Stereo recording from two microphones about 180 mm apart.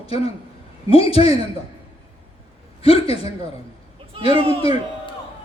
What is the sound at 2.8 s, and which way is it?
Speech, 35° left (ahead or behind).